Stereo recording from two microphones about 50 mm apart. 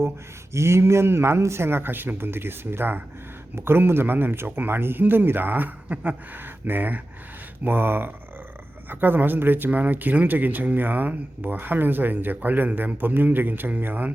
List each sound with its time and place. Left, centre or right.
0.5 s speech: right